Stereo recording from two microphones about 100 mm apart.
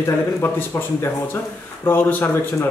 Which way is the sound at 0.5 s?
20° left (ahead or behind).